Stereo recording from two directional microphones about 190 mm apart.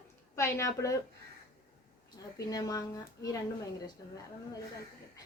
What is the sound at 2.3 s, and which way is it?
Speech, 20° left (ahead or behind).